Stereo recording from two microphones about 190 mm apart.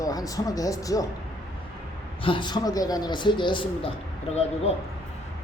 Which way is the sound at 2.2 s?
25° left (ahead or behind).